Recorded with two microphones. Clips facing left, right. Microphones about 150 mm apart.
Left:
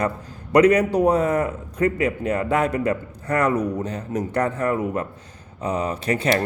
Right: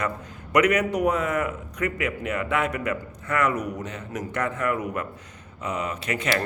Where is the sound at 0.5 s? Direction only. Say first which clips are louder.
Left 6 dB; 30° left (ahead or behind).